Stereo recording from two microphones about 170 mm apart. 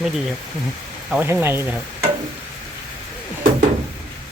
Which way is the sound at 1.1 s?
10° right (ahead or behind).